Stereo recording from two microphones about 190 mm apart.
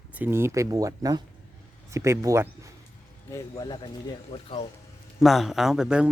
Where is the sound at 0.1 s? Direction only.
10° right (ahead or behind).